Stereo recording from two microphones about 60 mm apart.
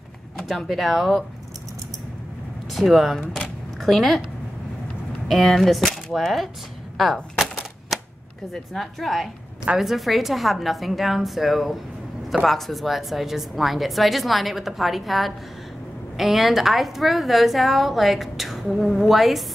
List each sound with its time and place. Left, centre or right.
0.4 s a woman's voice: centre
2.7 s a woman's voice: centre
5.3 s a woman's voice: centre
7.9 s a sound: centre
8.7 s a woman's voice: centre